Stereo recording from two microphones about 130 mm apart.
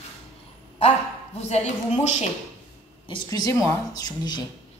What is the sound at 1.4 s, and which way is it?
Speech, 60° left (ahead or behind).